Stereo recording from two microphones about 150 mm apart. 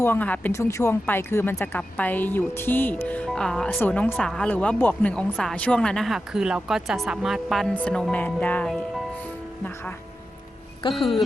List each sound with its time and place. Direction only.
0.0 s speech: 10° left (ahead or behind)
10.8 s speech: 35° left (ahead or behind)